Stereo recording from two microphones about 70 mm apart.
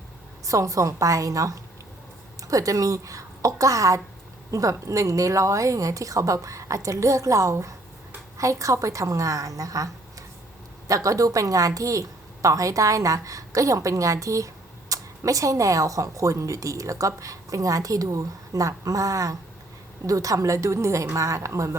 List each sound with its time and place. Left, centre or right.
0.4 s a woman's voice: right